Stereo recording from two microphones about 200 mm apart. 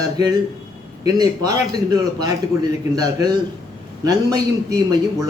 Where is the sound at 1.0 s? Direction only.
20° right (ahead or behind).